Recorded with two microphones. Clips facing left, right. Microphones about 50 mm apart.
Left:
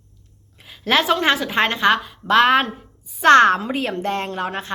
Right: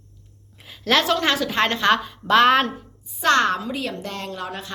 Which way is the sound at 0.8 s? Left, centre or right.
Centre.